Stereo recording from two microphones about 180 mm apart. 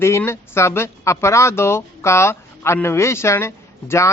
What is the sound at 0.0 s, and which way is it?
A man's voice, 15° left (ahead or behind).